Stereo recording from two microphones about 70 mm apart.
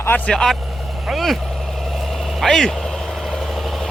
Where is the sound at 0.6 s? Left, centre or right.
Centre.